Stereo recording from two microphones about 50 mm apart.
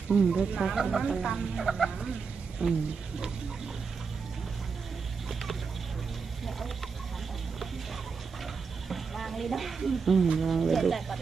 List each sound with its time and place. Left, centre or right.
0.2 s speech: centre
2.6 s speech: centre
8.8 s speech: centre